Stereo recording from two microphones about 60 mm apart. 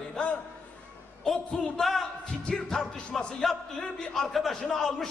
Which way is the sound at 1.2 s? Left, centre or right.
Centre.